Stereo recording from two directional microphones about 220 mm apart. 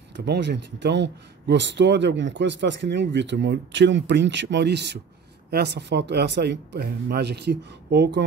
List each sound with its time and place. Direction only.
0.2 s speech: 50° right (ahead or behind)